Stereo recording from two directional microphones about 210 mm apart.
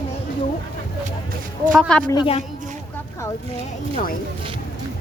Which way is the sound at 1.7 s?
Centre (ahead or behind).